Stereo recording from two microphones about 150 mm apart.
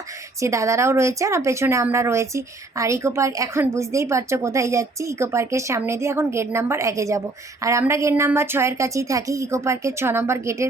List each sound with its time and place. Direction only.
0.4 s speech: 20° right (ahead or behind)